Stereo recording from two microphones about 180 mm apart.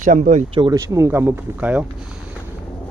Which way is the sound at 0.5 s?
25° right (ahead or behind).